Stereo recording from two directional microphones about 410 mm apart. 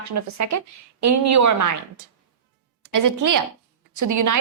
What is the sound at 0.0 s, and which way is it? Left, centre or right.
A woman's voice, right.